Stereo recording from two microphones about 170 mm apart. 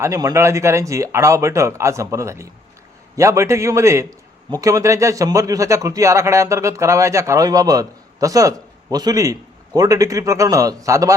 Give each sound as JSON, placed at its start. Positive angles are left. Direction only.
{"t": 0.0, "sound": "a man's voice", "side_deg": -20}